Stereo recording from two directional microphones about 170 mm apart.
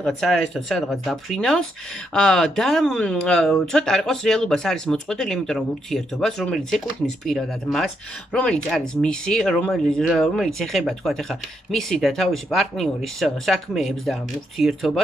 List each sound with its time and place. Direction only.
0.0 s speech: 5° left (ahead or behind)